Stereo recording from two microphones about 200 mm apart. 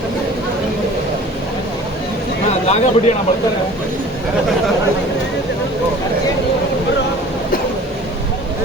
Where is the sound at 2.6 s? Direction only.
30° left (ahead or behind).